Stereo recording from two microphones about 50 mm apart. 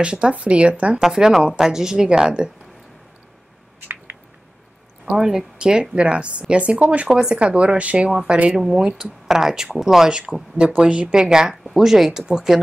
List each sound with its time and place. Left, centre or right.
0.0 s speech: right
1.0 s speech: centre
5.0 s speech: centre; by 7.1 s right
7.1 s speech: centre
7.3 s speech: right
8.5 s speech: centre